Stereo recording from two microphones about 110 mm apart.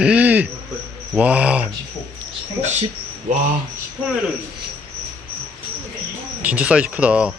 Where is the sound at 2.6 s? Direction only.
90° right.